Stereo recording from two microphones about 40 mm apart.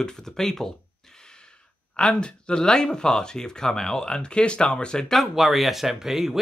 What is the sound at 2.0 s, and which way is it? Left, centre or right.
Speech, left.